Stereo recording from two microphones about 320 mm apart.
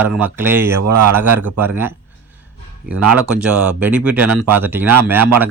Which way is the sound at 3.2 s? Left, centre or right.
Centre.